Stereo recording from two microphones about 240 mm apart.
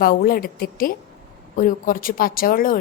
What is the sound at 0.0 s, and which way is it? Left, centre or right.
A woman's voice, left.